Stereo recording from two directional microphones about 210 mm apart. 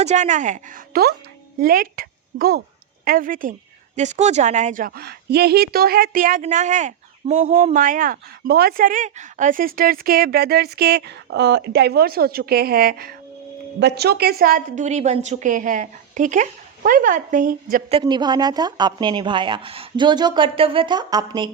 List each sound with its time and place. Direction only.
0.0 s a woman's voice: 35° right (ahead or behind)
18.0 s speech: 20° right (ahead or behind)